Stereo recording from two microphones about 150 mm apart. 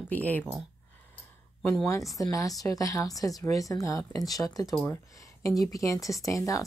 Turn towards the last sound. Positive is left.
turn(degrees=20)  # may be behind; listen again after turning